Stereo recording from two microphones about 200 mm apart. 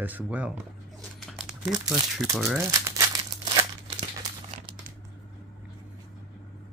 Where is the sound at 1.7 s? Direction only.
20° right (ahead or behind).